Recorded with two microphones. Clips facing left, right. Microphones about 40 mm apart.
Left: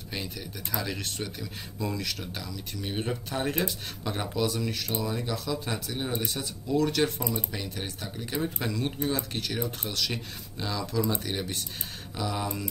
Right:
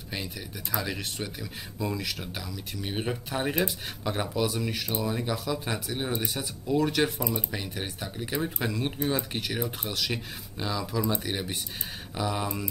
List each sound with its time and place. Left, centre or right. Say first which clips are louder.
0.1 s speech: even; centre
7.2 s speech: right 1 dB; right
7.5 s speech: right 1 dB; centre